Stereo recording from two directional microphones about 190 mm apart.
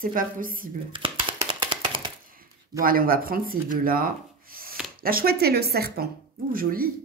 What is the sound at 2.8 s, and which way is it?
A woman's voice, 50° right (ahead or behind).